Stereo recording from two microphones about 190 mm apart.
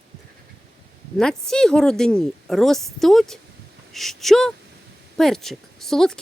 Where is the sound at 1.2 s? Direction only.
5° left (ahead or behind).